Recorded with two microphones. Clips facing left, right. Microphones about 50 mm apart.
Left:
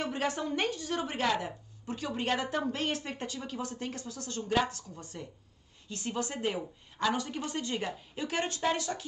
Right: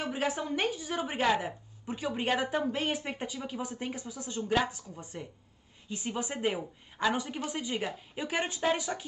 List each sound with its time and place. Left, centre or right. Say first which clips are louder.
0.0 s a woman's voice: even; centre